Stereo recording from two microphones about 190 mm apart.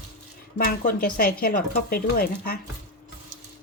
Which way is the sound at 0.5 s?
50° left (ahead or behind).